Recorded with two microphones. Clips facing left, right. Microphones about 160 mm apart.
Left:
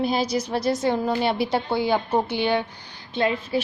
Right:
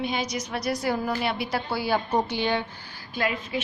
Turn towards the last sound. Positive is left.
turn(degrees=30)  # may be behind; listen again after turning